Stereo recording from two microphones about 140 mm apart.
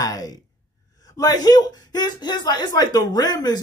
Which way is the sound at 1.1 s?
25° left (ahead or behind).